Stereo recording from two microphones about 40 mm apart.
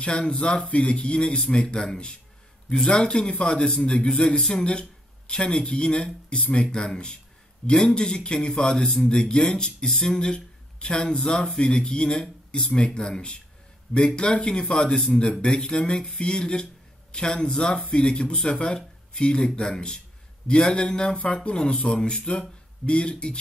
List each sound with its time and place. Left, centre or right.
0.0 s speech: left